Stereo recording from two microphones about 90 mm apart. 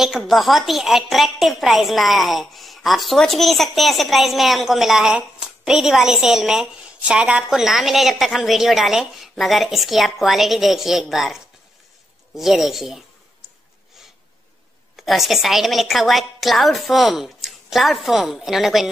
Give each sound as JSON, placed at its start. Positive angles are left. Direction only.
{"t": 0.0, "sound": "a woman's voice", "side_deg": 0}
{"t": 15.0, "sound": "a woman's voice", "side_deg": 0}